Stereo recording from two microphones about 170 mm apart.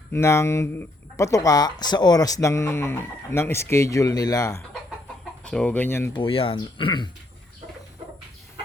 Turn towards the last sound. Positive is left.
turn(degrees=25)  # may be behind; listen again after turning